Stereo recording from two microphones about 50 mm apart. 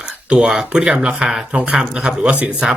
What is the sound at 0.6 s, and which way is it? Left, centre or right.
Speech, centre.